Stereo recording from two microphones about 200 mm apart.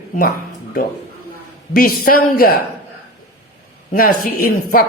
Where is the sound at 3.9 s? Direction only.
45° left (ahead or behind).